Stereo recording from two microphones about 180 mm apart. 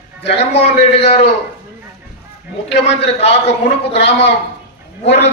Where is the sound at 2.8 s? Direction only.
35° left (ahead or behind).